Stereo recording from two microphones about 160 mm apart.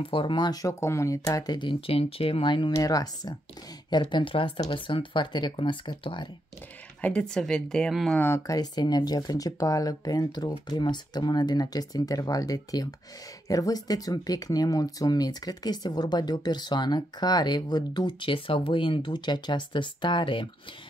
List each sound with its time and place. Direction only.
0.0 s speech: 35° left (ahead or behind)
7.0 s speech: 5° left (ahead or behind)
8.2 s speech: 15° left (ahead or behind)